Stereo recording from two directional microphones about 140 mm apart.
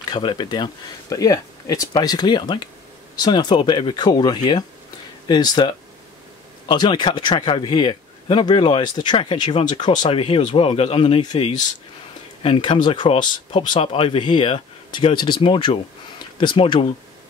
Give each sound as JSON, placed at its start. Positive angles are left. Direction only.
{"t": 0.1, "sound": "a man's voice", "side_deg": 35}
{"t": 6.7, "sound": "a man's voice", "side_deg": 35}